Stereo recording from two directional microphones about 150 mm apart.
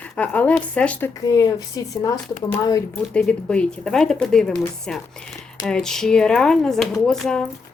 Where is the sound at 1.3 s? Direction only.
25° left (ahead or behind).